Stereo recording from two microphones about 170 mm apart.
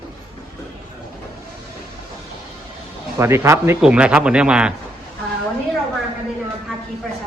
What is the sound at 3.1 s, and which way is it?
Speech, 15° right (ahead or behind).